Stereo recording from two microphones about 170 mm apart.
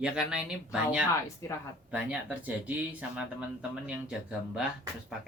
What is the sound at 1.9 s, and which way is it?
Speech, 10° right (ahead or behind).